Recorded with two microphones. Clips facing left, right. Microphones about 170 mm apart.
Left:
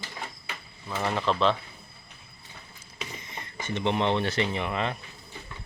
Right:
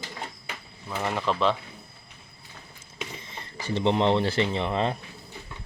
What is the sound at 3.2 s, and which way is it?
Speech, 35° right (ahead or behind).